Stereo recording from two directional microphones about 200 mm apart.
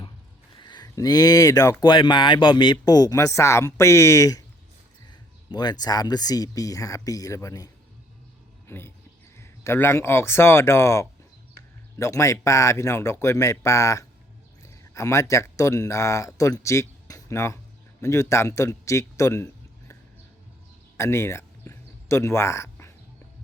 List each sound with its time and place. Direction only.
0.6 s speech: 20° left (ahead or behind)
5.0 s music: 20° left (ahead or behind)
5.8 s speech: 20° left (ahead or behind)
20.9 s a sound: 15° left (ahead or behind)